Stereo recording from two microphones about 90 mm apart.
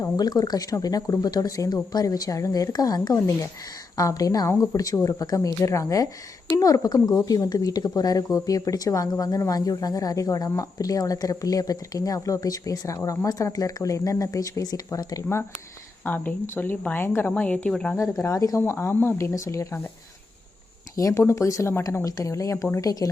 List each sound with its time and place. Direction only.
0.0 s speech: 45° left (ahead or behind)
16.0 s speech: 20° left (ahead or behind)
17.9 s speech: 35° left (ahead or behind)
20.9 s speech: 35° left (ahead or behind)